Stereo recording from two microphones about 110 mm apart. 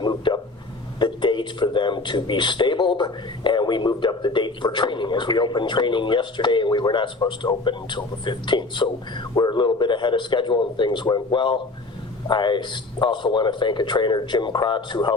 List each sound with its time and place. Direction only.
0.0 s vehicle: 40° left (ahead or behind)
0.9 s speech: 45° left (ahead or behind)